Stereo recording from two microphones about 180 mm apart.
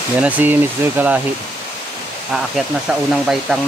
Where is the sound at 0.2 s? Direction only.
10° right (ahead or behind).